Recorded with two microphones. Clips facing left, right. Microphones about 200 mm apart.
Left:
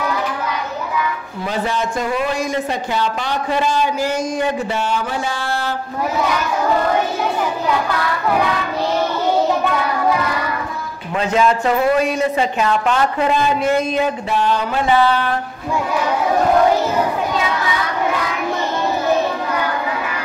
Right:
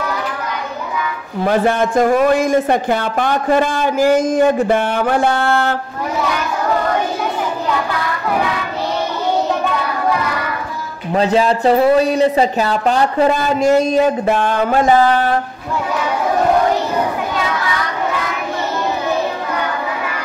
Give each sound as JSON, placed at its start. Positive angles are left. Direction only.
{"t": 1.4, "sound": "speech", "side_deg": -55}
{"t": 4.4, "sound": "a sound", "side_deg": -50}
{"t": 11.1, "sound": "speech", "side_deg": -35}
{"t": 14.2, "sound": "speech", "side_deg": -50}